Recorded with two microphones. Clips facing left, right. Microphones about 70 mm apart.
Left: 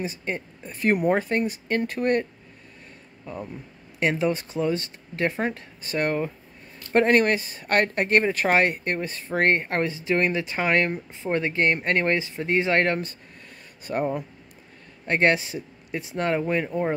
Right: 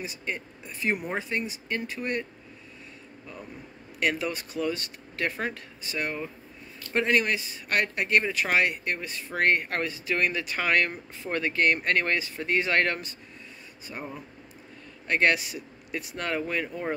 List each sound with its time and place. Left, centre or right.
0.0 s speech: left
4.0 s speech: left
5.9 s speech: left
13.8 s speech: left
15.0 s speech: left